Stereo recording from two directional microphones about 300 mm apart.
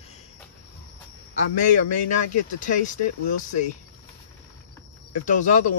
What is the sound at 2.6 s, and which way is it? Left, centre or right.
Speech, left.